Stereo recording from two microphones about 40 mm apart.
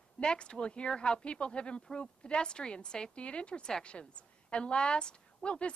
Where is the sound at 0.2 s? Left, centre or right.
Left.